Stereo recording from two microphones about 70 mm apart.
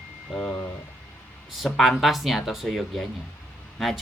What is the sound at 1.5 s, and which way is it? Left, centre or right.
Speech, centre.